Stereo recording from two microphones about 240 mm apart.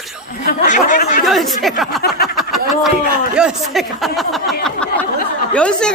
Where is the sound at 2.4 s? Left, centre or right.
Centre.